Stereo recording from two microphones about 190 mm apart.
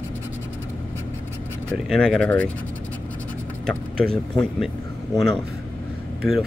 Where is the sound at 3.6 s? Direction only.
5° left (ahead or behind).